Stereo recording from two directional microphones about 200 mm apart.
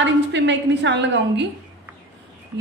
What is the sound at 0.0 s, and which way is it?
A woman's voice, 65° right (ahead or behind).